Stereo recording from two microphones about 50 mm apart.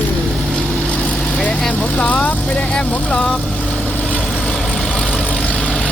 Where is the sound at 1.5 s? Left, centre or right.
Left.